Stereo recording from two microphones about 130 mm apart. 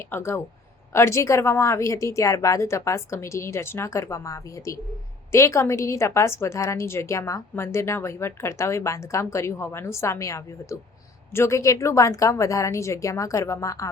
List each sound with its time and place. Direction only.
0.1 s a woman's voice: 20° left (ahead or behind)